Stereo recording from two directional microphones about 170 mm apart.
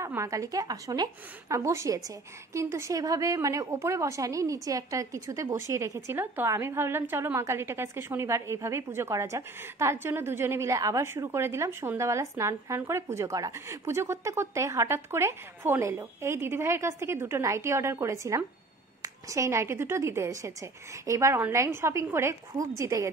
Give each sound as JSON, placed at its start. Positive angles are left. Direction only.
{"t": 0.0, "sound": "a woman's voice", "side_deg": -15}